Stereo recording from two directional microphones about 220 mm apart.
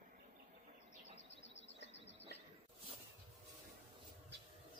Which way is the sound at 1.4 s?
55° left (ahead or behind).